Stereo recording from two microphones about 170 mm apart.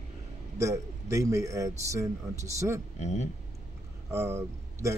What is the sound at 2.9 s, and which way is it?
Speech, 40° left (ahead or behind).